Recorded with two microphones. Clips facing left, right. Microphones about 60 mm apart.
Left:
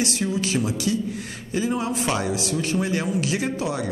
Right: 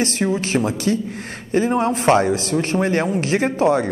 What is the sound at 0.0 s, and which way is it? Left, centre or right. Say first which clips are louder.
Speech: right 4 dB; right.